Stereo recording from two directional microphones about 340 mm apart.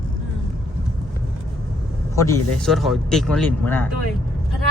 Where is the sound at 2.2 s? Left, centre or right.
Centre.